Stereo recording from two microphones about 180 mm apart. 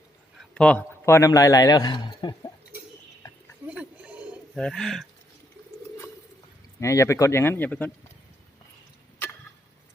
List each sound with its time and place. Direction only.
0.3 s a man's voice: 5° left (ahead or behind); by 2.5 s 25° left (ahead or behind)
3.7 s a sound: 5° right (ahead or behind)
4.5 s speech: 5° left (ahead or behind)
6.7 s speech: 15° left (ahead or behind)